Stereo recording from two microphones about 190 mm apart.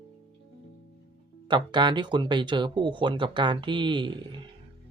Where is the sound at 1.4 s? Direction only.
25° right (ahead or behind).